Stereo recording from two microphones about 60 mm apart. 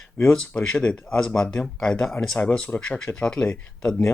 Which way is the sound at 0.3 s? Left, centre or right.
Left.